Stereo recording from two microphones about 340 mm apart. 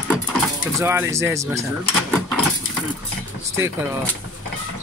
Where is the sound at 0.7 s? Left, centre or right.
Centre.